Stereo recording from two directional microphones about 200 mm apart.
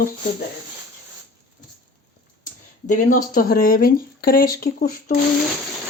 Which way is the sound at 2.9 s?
45° left (ahead or behind).